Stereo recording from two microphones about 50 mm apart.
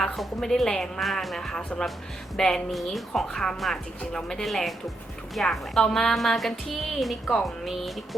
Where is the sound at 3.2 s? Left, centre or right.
Centre.